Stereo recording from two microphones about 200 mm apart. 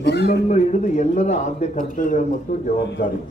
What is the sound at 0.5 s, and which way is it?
Speech, 35° left (ahead or behind).